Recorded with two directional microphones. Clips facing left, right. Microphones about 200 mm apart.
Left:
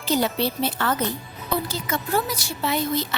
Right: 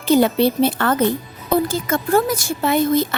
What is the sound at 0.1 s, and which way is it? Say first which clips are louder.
A woman's voice: right 8 dB; 55° right (ahead or behind).